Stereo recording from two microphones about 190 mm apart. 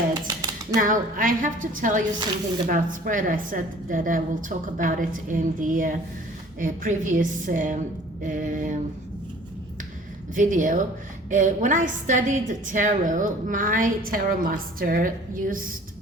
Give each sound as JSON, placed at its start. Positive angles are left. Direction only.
{"t": 0.1, "sound": "dishes", "side_deg": -20}
{"t": 0.8, "sound": "a woman's voice", "side_deg": -45}
{"t": 10.3, "sound": "a woman's voice", "side_deg": -45}